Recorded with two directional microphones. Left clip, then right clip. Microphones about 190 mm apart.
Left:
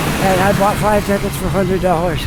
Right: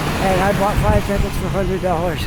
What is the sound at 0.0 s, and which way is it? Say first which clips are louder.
Vehicle: left 3 dB; 60° left (ahead or behind).